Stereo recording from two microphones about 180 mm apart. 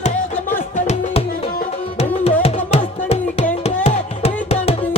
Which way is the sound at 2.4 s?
35° left (ahead or behind).